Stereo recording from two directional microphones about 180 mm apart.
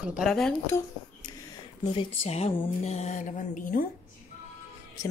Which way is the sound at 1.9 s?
30° left (ahead or behind).